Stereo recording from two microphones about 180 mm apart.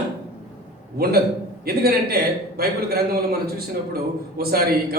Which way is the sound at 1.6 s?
60° right (ahead or behind).